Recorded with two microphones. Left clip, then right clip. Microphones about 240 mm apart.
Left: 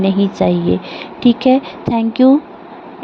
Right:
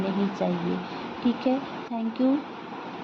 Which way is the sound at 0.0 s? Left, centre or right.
Left.